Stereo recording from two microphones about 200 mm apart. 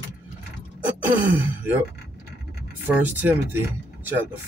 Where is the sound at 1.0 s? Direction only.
10° right (ahead or behind).